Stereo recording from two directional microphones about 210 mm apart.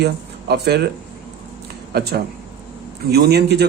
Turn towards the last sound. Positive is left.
turn(degrees=-50)  # may be behind; listen again after turning